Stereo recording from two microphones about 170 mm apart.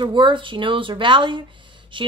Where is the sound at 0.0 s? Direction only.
30° right (ahead or behind).